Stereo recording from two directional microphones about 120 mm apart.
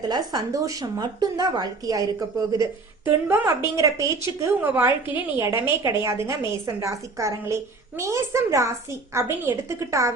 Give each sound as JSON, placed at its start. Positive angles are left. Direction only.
{"t": 0.1, "sound": "a woman's voice", "side_deg": -35}